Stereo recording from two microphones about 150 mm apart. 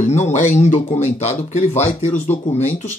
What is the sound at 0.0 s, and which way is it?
Speech, 50° left (ahead or behind).